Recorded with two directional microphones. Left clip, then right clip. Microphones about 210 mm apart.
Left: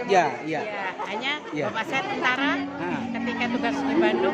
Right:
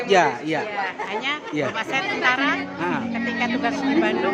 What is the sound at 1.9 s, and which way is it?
Speech, 5° right (ahead or behind).